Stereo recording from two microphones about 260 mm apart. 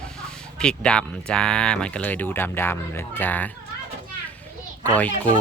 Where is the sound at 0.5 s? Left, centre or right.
Centre.